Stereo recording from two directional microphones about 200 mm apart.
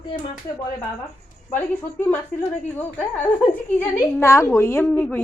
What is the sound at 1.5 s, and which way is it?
A woman's voice, 10° left (ahead or behind).